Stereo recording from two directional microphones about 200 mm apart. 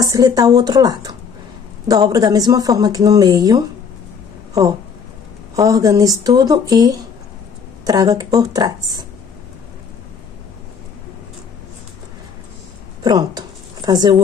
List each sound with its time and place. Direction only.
0.0 s speech: 15° right (ahead or behind)
5.6 s speech: 15° right (ahead or behind)
13.0 s a sound: 20° right (ahead or behind)